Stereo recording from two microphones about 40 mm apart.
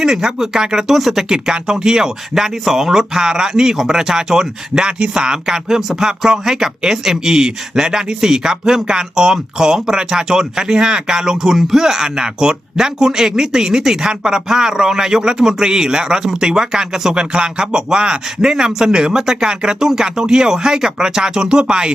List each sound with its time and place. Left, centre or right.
0.0 s speech: centre
1.3 s speech: centre